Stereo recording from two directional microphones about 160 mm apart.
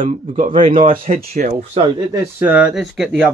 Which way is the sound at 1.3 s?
45° right (ahead or behind).